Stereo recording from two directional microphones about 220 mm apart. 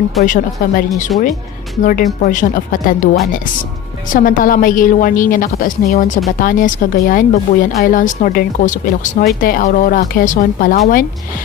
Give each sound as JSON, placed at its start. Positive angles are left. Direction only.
{"t": 0.2, "sound": "speech", "side_deg": 40}
{"t": 4.1, "sound": "speech", "side_deg": 40}